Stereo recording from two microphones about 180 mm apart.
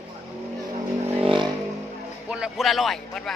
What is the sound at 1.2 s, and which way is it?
Vehicle, 25° right (ahead or behind).